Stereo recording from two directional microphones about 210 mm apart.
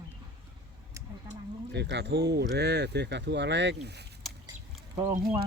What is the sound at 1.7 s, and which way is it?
Speech, 55° right (ahead or behind).